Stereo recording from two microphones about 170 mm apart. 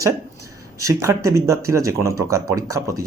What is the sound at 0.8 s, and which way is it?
Speech, 20° right (ahead or behind).